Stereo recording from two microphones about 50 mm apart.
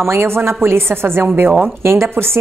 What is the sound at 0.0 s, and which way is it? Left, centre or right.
A woman's voice, right.